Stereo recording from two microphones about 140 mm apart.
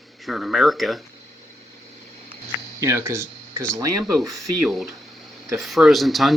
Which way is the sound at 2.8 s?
20° right (ahead or behind).